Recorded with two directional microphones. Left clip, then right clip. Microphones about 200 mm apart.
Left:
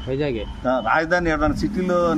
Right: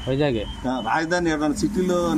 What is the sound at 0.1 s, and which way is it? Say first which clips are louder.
Speech: right 2 dB; 45° right (ahead or behind).